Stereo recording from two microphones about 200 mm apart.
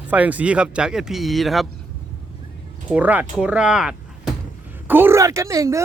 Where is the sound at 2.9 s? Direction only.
5° right (ahead or behind).